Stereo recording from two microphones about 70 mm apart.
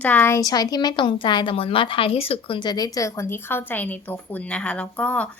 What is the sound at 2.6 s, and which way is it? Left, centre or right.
A woman's voice, left.